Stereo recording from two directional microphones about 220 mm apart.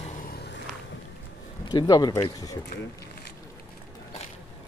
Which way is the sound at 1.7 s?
20° left (ahead or behind).